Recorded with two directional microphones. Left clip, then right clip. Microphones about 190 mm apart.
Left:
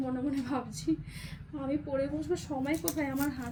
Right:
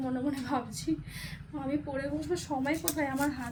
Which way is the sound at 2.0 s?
20° right (ahead or behind).